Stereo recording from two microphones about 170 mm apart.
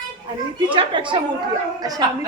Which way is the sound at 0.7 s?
30° right (ahead or behind).